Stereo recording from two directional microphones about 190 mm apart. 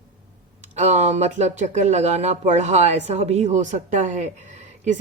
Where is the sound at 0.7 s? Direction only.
35° right (ahead or behind).